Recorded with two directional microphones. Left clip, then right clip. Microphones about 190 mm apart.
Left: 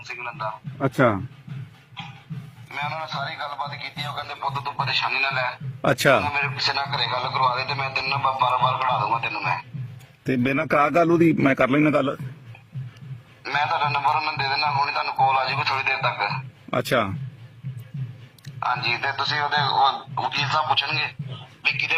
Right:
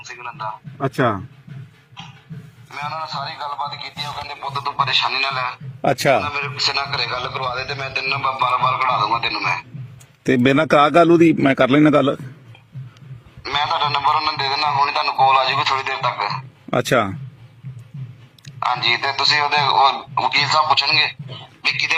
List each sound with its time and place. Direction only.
0.0 s a man's voice: centre (ahead or behind)
2.6 s a man's voice: centre (ahead or behind)
4.4 s a man's voice: 15° right (ahead or behind)
5.5 s a man's voice: 5° right (ahead or behind)
10.2 s speech: 40° right (ahead or behind)
10.8 s a man's voice: 25° right (ahead or behind)
11.9 s speech: 35° right (ahead or behind)
13.4 s a man's voice: 15° right (ahead or behind)
18.6 s a man's voice: 20° right (ahead or behind)